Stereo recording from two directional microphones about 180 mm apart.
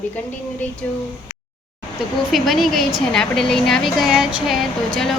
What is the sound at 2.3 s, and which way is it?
A woman's voice, centre (ahead or behind).